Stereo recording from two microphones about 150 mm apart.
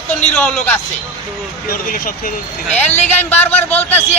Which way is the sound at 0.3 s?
5° left (ahead or behind).